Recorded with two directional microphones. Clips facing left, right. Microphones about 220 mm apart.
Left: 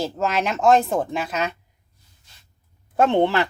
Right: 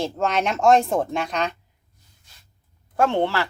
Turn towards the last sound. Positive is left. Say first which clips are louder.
# left 3 dB
turn(degrees=20)  # may be behind; listen again after turning